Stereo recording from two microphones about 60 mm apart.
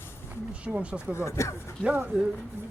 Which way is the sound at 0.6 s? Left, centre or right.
Centre.